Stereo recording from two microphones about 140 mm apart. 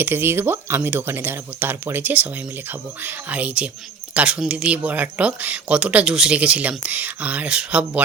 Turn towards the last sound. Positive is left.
turn(degrees=-10)  # may be behind; listen again after turning